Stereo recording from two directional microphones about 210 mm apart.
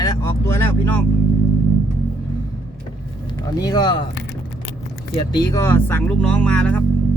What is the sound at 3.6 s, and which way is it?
Speech, 20° left (ahead or behind).